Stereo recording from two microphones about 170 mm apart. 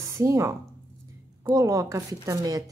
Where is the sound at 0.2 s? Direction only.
20° right (ahead or behind).